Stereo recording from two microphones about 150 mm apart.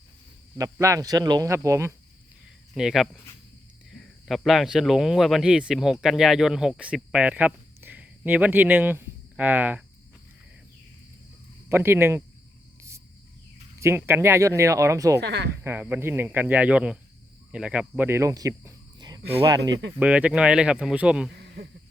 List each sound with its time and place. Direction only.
0.6 s speech: 20° right (ahead or behind)
2.7 s speech: centre (ahead or behind)
11.7 s speech: 15° right (ahead or behind)
13.7 s speech: 15° right (ahead or behind)
15.2 s speech: 90° right
15.6 s speech: 15° right (ahead or behind)
20.0 s speech: 10° right (ahead or behind)